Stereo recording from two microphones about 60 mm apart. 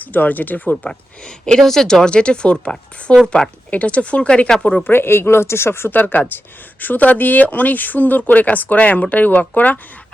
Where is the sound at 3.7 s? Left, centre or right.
Left.